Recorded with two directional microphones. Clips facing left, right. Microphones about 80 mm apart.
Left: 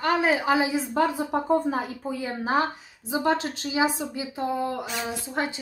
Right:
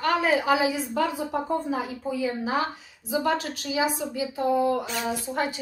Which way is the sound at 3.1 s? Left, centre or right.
Left.